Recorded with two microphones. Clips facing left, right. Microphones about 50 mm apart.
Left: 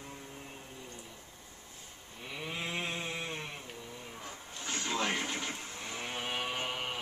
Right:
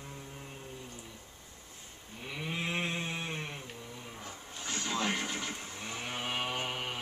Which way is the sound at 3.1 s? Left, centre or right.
Centre.